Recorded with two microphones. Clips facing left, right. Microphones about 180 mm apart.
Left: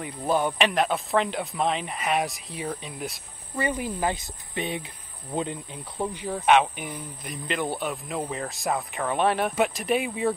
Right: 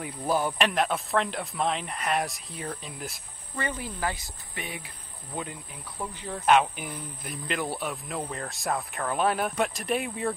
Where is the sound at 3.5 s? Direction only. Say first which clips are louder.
Left 5 dB; 15° left (ahead or behind).